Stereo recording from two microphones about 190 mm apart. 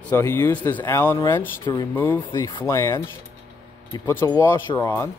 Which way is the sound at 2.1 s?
25° left (ahead or behind).